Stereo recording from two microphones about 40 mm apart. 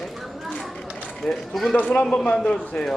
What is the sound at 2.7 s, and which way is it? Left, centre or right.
Speech, left.